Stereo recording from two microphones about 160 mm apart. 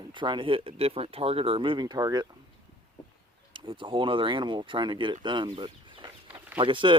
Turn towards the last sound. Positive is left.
turn(degrees=-30)  # may be behind; listen again after turning